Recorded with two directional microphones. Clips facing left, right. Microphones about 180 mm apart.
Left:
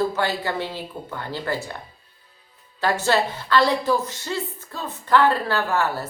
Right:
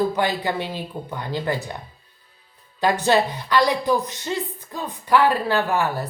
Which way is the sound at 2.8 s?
15° right (ahead or behind).